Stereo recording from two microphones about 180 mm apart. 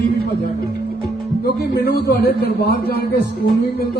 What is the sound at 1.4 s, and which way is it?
A man's voice, 65° left (ahead or behind).